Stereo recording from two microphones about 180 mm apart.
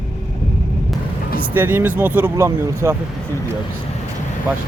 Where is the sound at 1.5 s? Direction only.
10° right (ahead or behind).